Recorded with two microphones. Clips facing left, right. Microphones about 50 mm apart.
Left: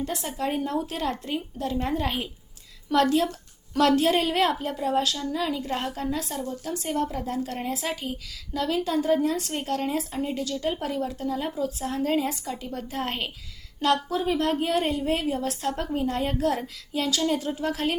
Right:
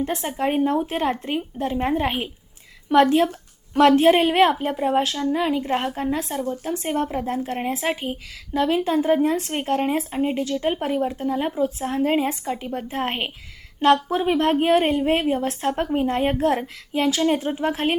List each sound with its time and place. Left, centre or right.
0.0 s speech: right